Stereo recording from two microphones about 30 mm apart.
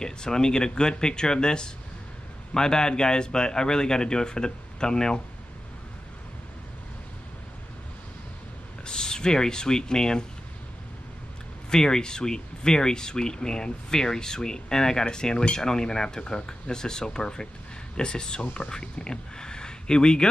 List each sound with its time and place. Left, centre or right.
0.0 s speech: left
8.8 s speech: left
11.7 s speech: left